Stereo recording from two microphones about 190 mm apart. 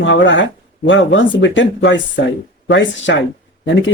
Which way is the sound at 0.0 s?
75° left (ahead or behind).